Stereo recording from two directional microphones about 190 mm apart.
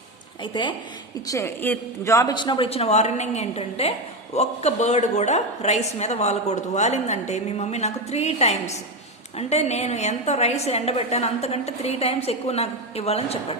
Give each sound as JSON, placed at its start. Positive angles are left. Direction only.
{"t": 1.3, "sound": "a man's voice", "side_deg": 15}